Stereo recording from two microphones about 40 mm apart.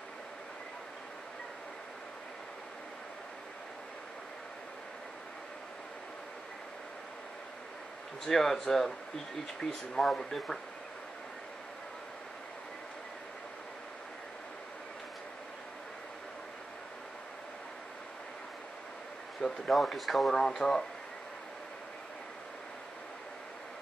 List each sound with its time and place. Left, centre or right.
8.3 s speech: centre
19.4 s speech: centre